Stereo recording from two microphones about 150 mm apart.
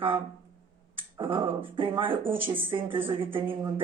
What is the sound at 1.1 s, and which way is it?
Speech, 25° right (ahead or behind).